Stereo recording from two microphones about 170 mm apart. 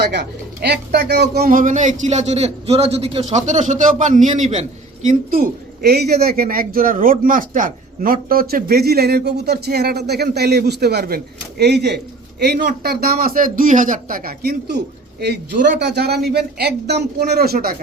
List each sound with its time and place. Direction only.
0.0 s a man's voice: 80° right; by 4.6 s 45° right (ahead or behind)
5.8 s a man's voice: 70° right (ahead or behind)
12.4 s speech: 65° right (ahead or behind)
15.9 s a man's voice: 70° right (ahead or behind)